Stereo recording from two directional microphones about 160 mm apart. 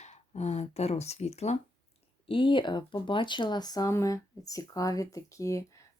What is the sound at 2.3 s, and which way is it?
Speech, 30° left (ahead or behind).